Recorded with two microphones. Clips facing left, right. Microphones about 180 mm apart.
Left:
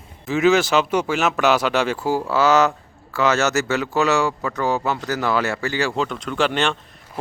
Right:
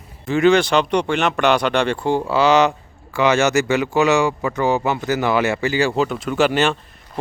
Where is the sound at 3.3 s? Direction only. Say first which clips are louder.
Right 3 dB; 15° right (ahead or behind).